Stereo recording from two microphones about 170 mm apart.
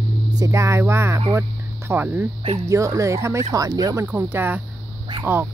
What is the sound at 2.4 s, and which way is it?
Speech, 35° right (ahead or behind).